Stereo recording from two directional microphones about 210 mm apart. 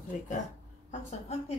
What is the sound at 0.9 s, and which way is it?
Speech, 30° left (ahead or behind).